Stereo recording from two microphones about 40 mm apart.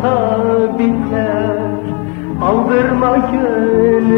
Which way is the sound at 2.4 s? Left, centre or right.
Centre.